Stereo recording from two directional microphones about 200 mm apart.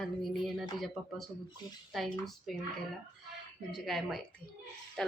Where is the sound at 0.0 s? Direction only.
Centre (ahead or behind).